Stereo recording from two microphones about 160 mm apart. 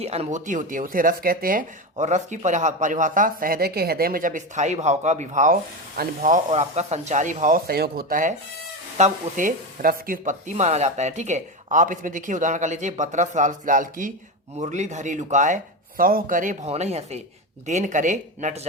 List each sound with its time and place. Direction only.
0.0 s speech: 40° right (ahead or behind)
6.5 s speech: 45° right (ahead or behind)
16.0 s speech: 65° right (ahead or behind)
16.6 s speech: 45° right (ahead or behind)